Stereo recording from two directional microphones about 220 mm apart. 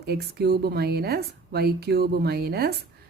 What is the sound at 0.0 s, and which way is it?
A woman's voice, 45° right (ahead or behind).